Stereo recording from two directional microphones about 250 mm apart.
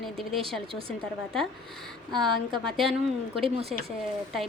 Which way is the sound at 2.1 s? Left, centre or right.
Centre.